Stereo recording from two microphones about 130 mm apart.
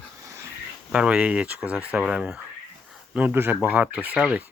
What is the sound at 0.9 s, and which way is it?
Speech, 10° right (ahead or behind).